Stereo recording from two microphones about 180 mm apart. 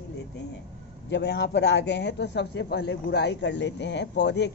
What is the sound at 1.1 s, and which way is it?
A man's voice, 70° left (ahead or behind).